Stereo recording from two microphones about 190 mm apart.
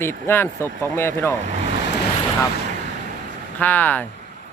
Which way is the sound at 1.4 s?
35° right (ahead or behind).